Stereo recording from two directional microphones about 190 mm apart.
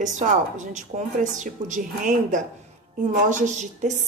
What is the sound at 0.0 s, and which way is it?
A woman's voice, 40° right (ahead or behind).